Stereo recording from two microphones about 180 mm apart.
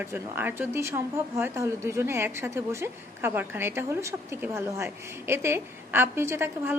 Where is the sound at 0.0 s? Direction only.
10° right (ahead or behind).